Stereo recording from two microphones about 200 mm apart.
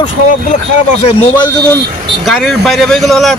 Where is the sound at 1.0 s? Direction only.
25° left (ahead or behind).